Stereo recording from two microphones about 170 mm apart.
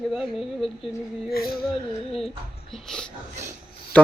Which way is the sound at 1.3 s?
60° left (ahead or behind).